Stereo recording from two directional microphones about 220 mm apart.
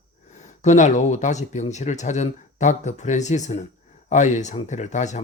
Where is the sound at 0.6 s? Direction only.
30° left (ahead or behind).